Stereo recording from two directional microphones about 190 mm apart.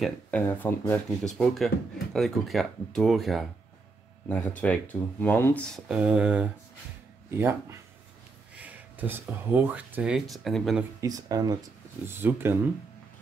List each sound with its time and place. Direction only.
0.0 s speech: 10° left (ahead or behind); by 7.5 s 10° right (ahead or behind)
8.5 s speech: 10° right (ahead or behind)
11.0 s speech: 20° right (ahead or behind)